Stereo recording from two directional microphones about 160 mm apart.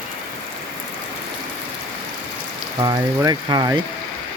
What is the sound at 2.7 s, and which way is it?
Speech, 25° right (ahead or behind).